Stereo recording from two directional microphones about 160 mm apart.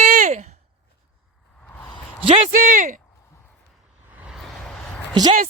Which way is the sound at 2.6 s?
55° right (ahead or behind).